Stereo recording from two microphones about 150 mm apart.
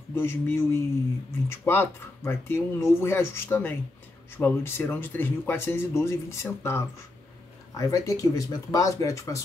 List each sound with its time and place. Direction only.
0.1 s speech: 15° left (ahead or behind)